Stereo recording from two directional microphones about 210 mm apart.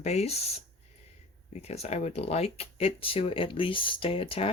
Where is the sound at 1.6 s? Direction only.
30° left (ahead or behind).